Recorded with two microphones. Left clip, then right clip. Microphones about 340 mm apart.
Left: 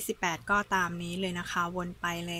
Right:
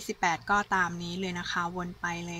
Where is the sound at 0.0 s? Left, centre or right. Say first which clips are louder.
Right 3 dB; centre.